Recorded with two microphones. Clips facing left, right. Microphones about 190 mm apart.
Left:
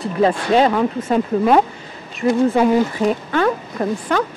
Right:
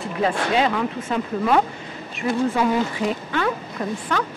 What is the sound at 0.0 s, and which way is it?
Speech, 40° left (ahead or behind).